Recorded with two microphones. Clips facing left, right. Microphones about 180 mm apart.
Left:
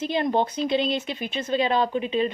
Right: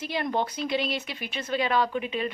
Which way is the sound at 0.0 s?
25° left (ahead or behind).